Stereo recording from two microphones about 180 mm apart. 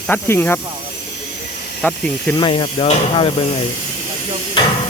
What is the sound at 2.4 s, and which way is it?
Speech, 25° left (ahead or behind).